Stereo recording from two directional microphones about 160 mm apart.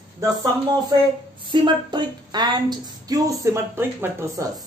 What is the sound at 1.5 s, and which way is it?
Speech, 30° right (ahead or behind).